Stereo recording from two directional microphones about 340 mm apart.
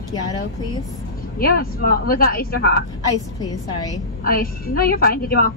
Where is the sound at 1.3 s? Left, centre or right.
Left.